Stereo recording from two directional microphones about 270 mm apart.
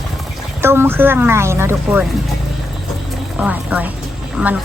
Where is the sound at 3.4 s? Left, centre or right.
Centre.